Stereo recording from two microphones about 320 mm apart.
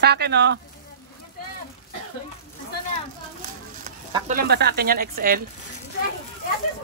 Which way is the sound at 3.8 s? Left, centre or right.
Right.